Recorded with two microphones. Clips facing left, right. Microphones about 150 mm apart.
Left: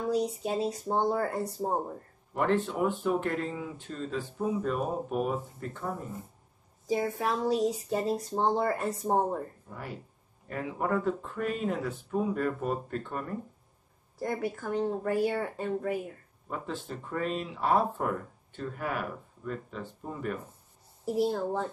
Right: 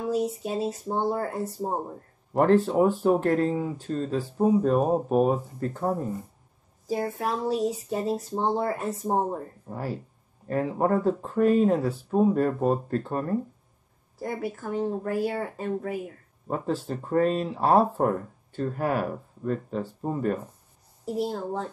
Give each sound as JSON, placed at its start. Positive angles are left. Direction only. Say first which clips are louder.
{"t": 0.0, "sound": "speech", "louder": "right 2 dB", "side_deg": -5}
{"t": 2.3, "sound": "speech", "louder": "right 8 dB", "side_deg": -40}
{"t": 7.2, "sound": "speech", "louder": "right 1 dB", "side_deg": 0}
{"t": 9.7, "sound": "speech", "louder": "right 8 dB", "side_deg": -35}
{"t": 14.2, "sound": "speech", "louder": "right 1 dB", "side_deg": -5}
{"t": 16.4, "sound": "speech", "louder": "right 8 dB", "side_deg": -40}
{"t": 21.0, "sound": "speech", "louder": "left 1 dB", "side_deg": 0}